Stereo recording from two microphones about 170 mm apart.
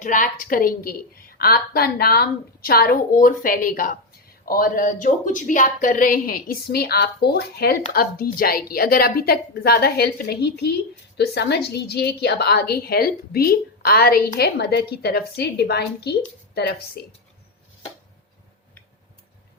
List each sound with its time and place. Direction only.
0.0 s a woman's voice: 50° left (ahead or behind); by 17.0 s 65° left (ahead or behind)